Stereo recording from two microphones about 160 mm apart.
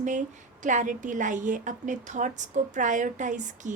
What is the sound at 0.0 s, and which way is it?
A woman's voice, 50° right (ahead or behind).